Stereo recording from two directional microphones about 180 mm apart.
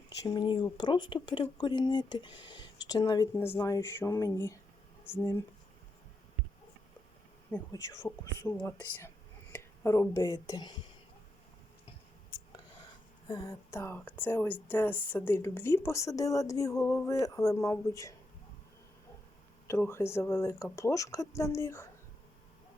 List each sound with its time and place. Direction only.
0.2 s speech: 25° left (ahead or behind)
7.5 s speech: 15° left (ahead or behind)
13.2 s speech: 20° left (ahead or behind)
19.6 s speech: 15° left (ahead or behind)